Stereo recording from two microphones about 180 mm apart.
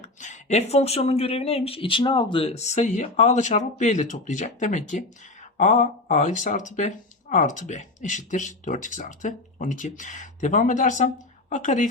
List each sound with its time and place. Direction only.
0.0 s speech: 40° left (ahead or behind)